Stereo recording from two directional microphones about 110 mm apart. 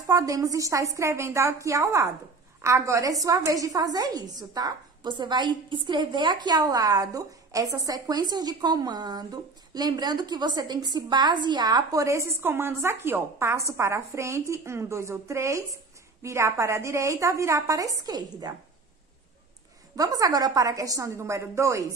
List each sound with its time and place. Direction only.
0.0 s a woman's voice: 30° right (ahead or behind)
20.0 s a woman's voice: 35° right (ahead or behind)